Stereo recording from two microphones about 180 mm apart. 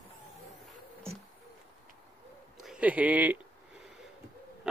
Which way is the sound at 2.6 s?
5° right (ahead or behind).